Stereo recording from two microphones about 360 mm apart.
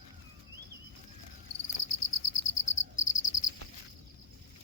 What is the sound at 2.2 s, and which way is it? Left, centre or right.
Cricket, left.